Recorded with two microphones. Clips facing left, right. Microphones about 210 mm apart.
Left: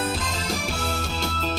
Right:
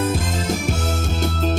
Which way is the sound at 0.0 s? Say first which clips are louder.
Right 6 dB; 45° right (ahead or behind).